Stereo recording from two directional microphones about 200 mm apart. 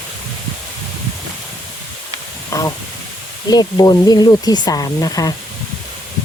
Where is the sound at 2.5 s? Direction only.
15° left (ahead or behind).